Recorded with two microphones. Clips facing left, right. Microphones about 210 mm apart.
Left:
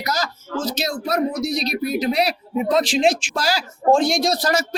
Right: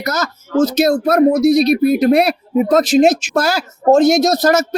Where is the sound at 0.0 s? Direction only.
55° right (ahead or behind).